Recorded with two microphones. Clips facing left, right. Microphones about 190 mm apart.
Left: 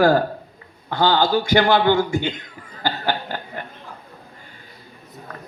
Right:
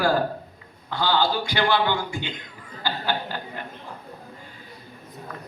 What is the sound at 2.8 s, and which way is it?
Chuckle, 50° left (ahead or behind).